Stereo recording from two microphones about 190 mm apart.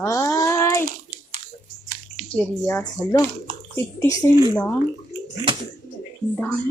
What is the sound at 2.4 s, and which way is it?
Speech, 10° left (ahead or behind).